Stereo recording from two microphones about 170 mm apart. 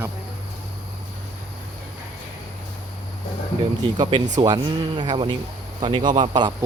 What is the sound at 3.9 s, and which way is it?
Speech, 25° right (ahead or behind).